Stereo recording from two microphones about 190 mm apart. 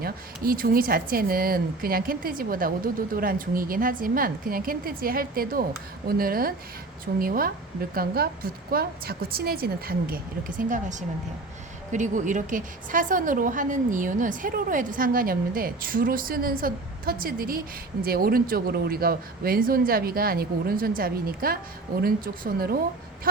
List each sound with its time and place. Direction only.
0.0 s a woman's voice: 50° right (ahead or behind)
10.6 s a woman's voice: 40° right (ahead or behind)